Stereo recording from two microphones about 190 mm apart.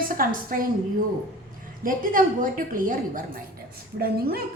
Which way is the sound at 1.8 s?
45° right (ahead or behind).